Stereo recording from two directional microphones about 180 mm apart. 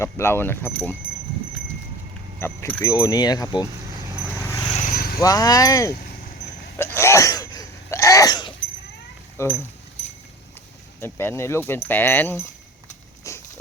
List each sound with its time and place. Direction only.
0.0 s speech: 15° left (ahead or behind)
2.4 s speech: 15° left (ahead or behind)
4.4 s vehicle: 15° left (ahead or behind)
4.7 s vehicle: 45° left (ahead or behind)
5.2 s speech: 20° left (ahead or behind)
6.7 s sneeze: 15° left (ahead or behind)
9.4 s speech: 15° left (ahead or behind)
11.0 s speech: 15° left (ahead or behind)
13.2 s a sound: 20° left (ahead or behind)